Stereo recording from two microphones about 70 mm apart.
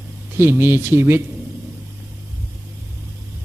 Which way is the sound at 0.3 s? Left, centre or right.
Right.